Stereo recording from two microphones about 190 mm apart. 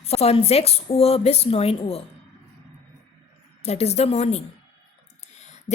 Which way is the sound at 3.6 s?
35° left (ahead or behind).